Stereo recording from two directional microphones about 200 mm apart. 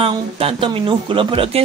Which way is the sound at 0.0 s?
30° right (ahead or behind).